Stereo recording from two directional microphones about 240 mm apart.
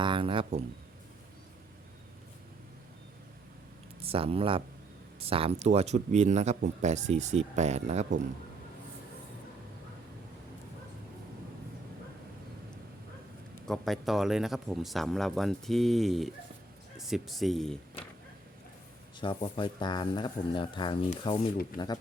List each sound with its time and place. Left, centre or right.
0.0 s speech: right
4.0 s speech: right
13.7 s speech: centre
19.2 s speech: left